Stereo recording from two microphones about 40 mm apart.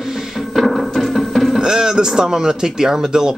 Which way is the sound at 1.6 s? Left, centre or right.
Centre.